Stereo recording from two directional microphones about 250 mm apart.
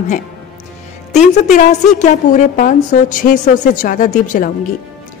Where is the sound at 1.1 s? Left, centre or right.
Left.